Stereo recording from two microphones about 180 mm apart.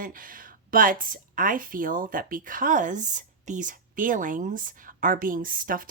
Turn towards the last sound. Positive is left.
turn(degrees=-50)  # may be behind; listen again after turning